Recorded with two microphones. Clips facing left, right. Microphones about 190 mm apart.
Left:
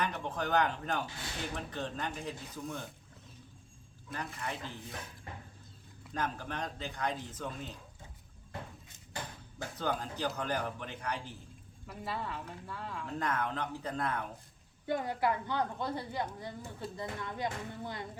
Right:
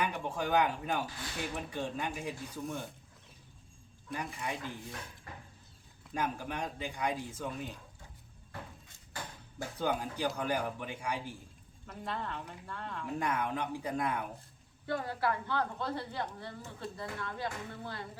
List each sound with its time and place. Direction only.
0.0 s a man's voice: 10° right (ahead or behind)
4.1 s a man's voice: 15° right (ahead or behind)
5.3 s a sound: 20° left (ahead or behind)
6.1 s a man's voice: 10° right (ahead or behind)
9.6 s a man's voice: 10° right (ahead or behind)
11.9 s speech: 5° left (ahead or behind)
13.1 s a man's voice: 10° right (ahead or behind)
14.8 s a woman's voice: 15° left (ahead or behind)